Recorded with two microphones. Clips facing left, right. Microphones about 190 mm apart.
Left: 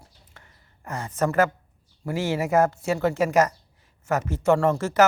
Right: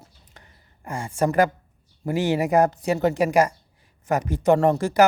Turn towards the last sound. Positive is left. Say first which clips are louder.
# right 2 dB
turn(degrees=-15)  # may be behind; listen again after turning